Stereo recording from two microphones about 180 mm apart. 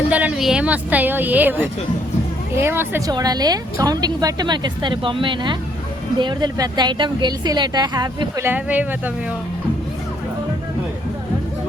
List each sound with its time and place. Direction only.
0.1 s a woman's voice: 5° right (ahead or behind)